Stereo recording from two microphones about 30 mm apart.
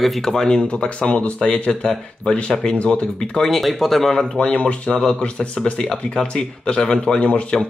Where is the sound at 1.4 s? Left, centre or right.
Left.